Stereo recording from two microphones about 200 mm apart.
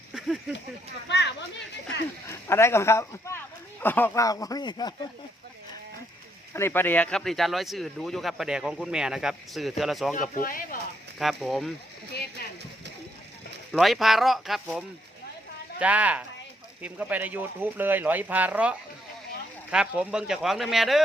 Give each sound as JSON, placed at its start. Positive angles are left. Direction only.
{"t": 0.1, "sound": "a sound", "side_deg": -5}
{"t": 1.0, "sound": "speech", "side_deg": 60}
{"t": 2.2, "sound": "speech", "side_deg": 15}
{"t": 6.5, "sound": "speech", "side_deg": 10}
{"t": 10.2, "sound": "speech", "side_deg": 45}
{"t": 11.2, "sound": "speech", "side_deg": 0}
{"t": 12.1, "sound": "speech", "side_deg": 50}
{"t": 13.7, "sound": "speech", "side_deg": 0}